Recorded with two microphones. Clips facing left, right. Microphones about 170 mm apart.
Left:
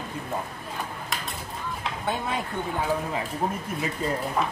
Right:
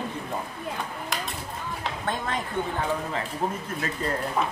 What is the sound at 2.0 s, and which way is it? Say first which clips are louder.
Speech: left 1 dB; 10° left (ahead or behind).